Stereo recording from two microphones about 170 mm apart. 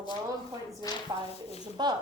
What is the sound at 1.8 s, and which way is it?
Speech, 25° right (ahead or behind).